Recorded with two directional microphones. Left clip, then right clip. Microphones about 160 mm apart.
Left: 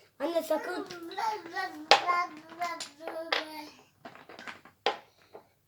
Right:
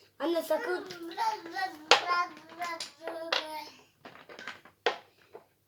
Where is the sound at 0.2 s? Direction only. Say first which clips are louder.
Even; 20° right (ahead or behind).